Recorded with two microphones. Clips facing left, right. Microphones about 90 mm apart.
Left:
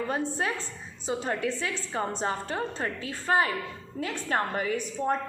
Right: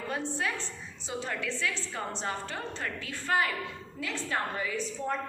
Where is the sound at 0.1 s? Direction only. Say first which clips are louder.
Left 4 dB; 40° left (ahead or behind).